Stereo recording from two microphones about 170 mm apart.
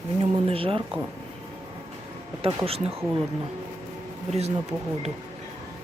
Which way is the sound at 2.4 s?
35° right (ahead or behind).